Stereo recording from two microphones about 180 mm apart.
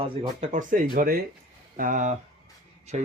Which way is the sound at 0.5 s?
50° right (ahead or behind).